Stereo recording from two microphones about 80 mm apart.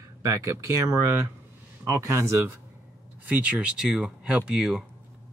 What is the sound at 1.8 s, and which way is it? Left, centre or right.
Speech, right.